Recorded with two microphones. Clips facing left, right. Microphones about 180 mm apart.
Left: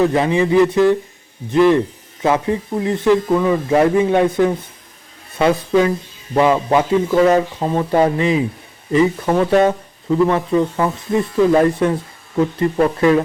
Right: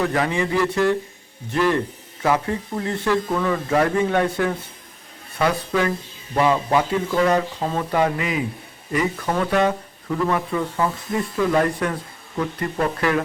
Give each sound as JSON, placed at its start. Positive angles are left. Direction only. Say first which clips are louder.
{"t": 0.0, "sound": "speech", "louder": "left 6 dB", "side_deg": 20}